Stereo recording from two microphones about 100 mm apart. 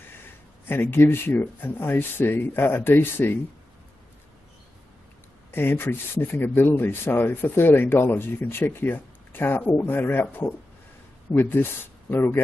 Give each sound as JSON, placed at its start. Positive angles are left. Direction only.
{"t": 0.7, "sound": "speech", "side_deg": 20}
{"t": 5.5, "sound": "speech", "side_deg": 20}
{"t": 11.3, "sound": "speech", "side_deg": 20}